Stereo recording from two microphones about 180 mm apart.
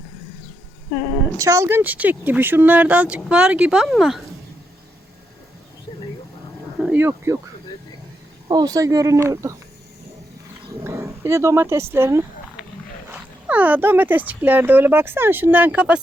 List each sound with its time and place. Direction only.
1.4 s speech: 15° right (ahead or behind)
6.7 s a sound: 10° right (ahead or behind)
8.4 s speech: 20° right (ahead or behind)
10.8 s speech: 15° right (ahead or behind)